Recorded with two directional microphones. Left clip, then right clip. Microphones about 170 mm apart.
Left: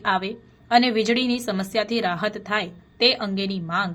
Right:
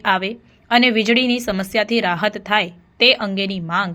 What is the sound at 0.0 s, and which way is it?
A woman's voice, 25° right (ahead or behind).